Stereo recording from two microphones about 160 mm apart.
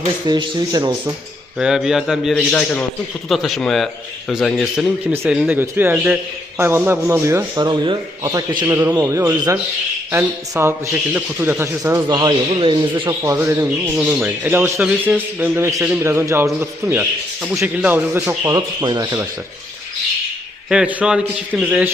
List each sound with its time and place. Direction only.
0.3 s speech: 30° right (ahead or behind)
1.5 s a man's voice: 5° right (ahead or behind)
5.1 s speech: 15° right (ahead or behind)
7.6 s speech: 30° right (ahead or behind)
20.7 s speech: 5° right (ahead or behind)